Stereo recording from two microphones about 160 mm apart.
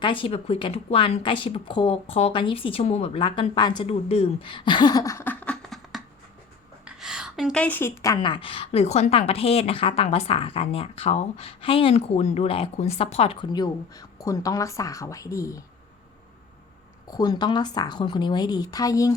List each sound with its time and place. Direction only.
0.0 s a woman's voice: 30° left (ahead or behind); by 5.5 s 10° left (ahead or behind)
6.8 s a sound: 5° right (ahead or behind)
7.6 s a woman's voice: 10° left (ahead or behind)
17.1 s a woman's voice: 25° left (ahead or behind)